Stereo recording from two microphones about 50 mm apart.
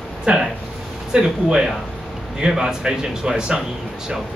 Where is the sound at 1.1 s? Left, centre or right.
Centre.